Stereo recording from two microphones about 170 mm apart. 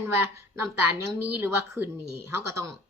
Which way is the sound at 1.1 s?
15° right (ahead or behind).